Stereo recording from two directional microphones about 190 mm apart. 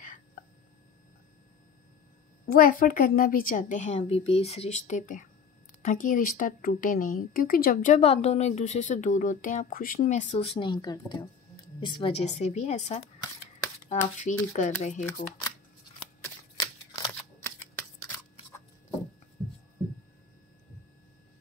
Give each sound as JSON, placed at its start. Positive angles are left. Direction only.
{"t": 2.4, "sound": "a woman's voice", "side_deg": 50}
{"t": 16.5, "sound": "scissors", "side_deg": 20}
{"t": 19.4, "sound": "hum", "side_deg": 10}